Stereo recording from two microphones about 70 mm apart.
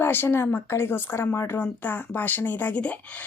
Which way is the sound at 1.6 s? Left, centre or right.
Left.